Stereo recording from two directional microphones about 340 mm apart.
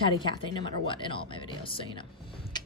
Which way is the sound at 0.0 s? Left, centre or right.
Centre.